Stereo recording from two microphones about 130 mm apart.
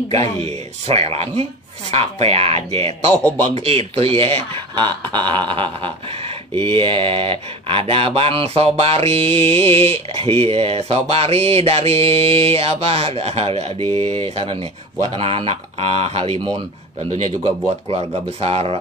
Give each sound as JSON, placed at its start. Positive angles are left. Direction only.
{"t": 0.1, "sound": "speech", "side_deg": -50}
{"t": 4.7, "sound": "speech", "side_deg": -35}
{"t": 17.8, "sound": "speech", "side_deg": -50}